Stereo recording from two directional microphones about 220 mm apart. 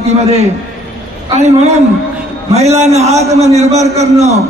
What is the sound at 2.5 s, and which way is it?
A man's voice, 30° right (ahead or behind).